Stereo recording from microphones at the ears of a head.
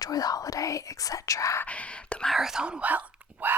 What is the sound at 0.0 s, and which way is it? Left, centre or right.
Whispering, left.